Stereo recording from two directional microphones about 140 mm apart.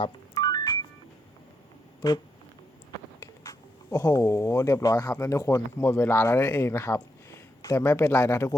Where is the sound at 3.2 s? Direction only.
25° left (ahead or behind).